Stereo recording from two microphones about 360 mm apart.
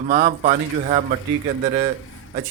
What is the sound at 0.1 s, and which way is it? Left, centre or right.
Speech, right.